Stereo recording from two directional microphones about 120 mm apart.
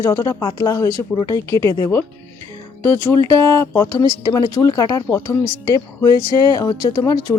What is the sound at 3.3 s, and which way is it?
Speech, 25° left (ahead or behind).